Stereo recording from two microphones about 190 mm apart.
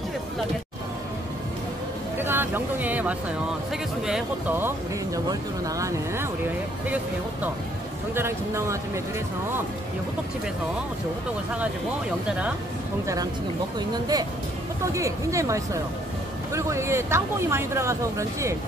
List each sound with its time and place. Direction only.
2.1 s speech: 10° right (ahead or behind)
8.1 s speech: 15° right (ahead or behind)
12.3 s speech: 5° right (ahead or behind)
13.0 s speech: 20° right (ahead or behind)